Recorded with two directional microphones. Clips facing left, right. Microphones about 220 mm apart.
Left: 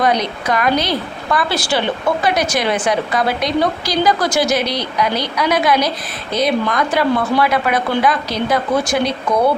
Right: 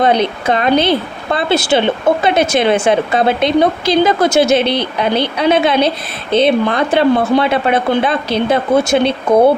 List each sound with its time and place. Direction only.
0.0 s a woman's voice: 25° right (ahead or behind)